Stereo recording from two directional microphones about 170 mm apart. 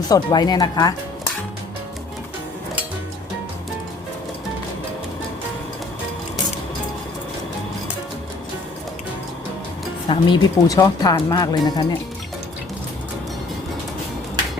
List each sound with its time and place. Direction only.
0.1 s speech: 25° left (ahead or behind)
10.1 s speech: 25° left (ahead or behind)